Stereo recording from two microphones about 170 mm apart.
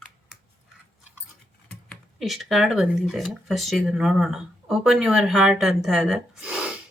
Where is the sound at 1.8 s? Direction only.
Centre (ahead or behind).